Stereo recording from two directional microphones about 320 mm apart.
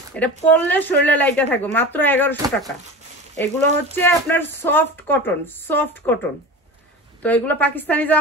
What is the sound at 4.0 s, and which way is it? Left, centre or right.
A woman's voice, centre.